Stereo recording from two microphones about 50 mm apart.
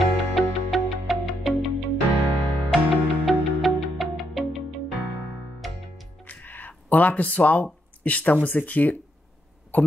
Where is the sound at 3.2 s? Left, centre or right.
Centre.